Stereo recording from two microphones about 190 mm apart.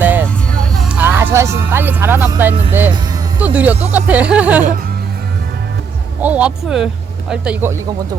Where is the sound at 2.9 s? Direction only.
20° right (ahead or behind).